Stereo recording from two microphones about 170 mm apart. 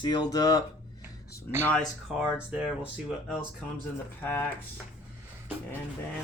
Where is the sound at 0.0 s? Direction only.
25° left (ahead or behind).